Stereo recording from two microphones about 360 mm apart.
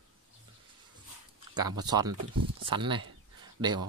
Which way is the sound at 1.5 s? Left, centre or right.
Centre.